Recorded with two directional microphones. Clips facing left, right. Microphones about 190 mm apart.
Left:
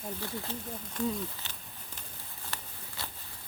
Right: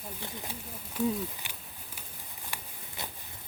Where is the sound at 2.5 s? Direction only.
10° right (ahead or behind).